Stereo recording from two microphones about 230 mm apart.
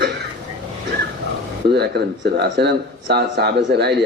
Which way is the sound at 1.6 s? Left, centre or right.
Right.